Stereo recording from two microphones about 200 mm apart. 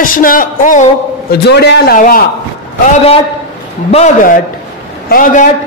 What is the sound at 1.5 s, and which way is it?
Speech, 55° left (ahead or behind).